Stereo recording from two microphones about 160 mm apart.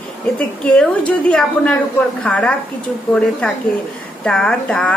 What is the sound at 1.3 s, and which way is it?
A woman's voice, 5° left (ahead or behind).